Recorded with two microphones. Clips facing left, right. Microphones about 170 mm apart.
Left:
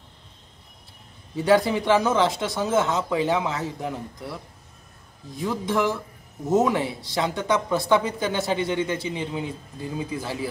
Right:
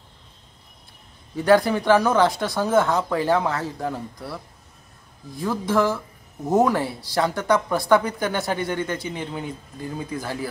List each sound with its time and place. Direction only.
1.3 s speech: 20° left (ahead or behind)